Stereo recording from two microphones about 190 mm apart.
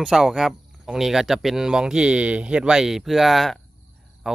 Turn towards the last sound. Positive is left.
turn(degrees=0)  # may be behind; listen again after turning